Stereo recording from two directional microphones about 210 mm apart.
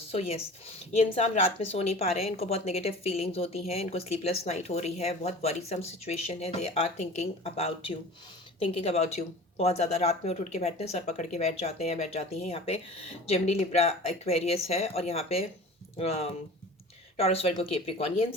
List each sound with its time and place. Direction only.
0.1 s a woman's voice: 30° left (ahead or behind)